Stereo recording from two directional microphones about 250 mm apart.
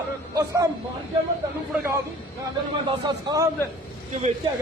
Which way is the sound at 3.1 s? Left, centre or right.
Centre.